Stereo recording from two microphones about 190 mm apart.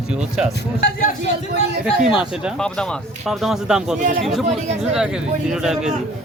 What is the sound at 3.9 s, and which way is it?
Speech, 45° right (ahead or behind).